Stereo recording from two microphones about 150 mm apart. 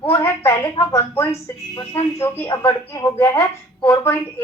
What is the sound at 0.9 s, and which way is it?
A woman's voice, 20° left (ahead or behind).